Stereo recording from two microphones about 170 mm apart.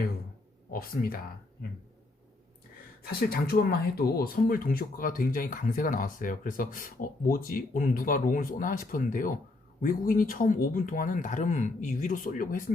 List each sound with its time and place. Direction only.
0.7 s speech: 60° left (ahead or behind)
3.0 s speech: 65° left (ahead or behind)